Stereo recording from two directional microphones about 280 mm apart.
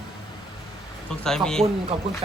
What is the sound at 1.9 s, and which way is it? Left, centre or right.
Speech, right.